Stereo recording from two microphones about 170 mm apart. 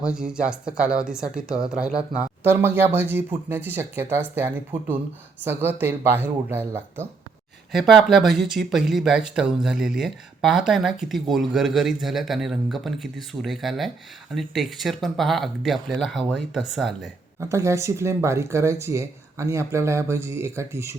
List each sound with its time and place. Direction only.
0.0 s speech: 5° right (ahead or behind)
7.7 s speech: centre (ahead or behind)
17.4 s speech: 15° right (ahead or behind)